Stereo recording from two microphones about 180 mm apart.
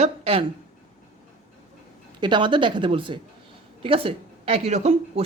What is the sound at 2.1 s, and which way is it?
A woman's voice, 25° right (ahead or behind).